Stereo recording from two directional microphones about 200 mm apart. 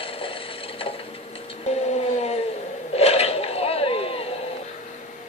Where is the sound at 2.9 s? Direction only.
30° left (ahead or behind).